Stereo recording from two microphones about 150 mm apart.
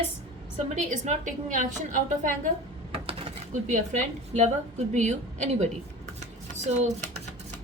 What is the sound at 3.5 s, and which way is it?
A woman's voice, 55° right (ahead or behind).